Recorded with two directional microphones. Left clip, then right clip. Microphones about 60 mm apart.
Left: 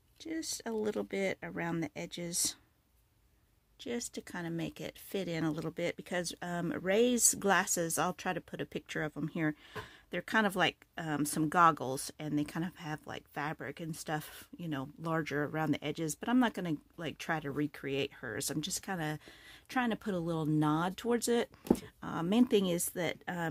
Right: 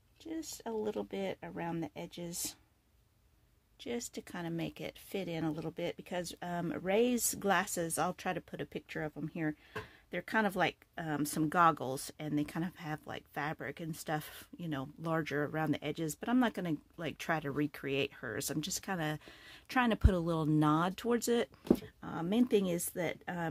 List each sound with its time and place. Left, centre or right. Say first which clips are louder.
0.2 s speech: left 3 dB; left
3.8 s speech: left 1 dB; left
5.1 s speech: left 2 dB; left
8.7 s speech: left 3 dB; left
10.1 s speech: left 2 dB; left
16.9 s speech: even; centre
17.2 s speech: right 1 dB; centre
19.7 s speech: right 2 dB; right
20.9 s speech: left 1 dB; centre
21.7 s speech: left 2 dB; left
22.6 s speech: left 2 dB; left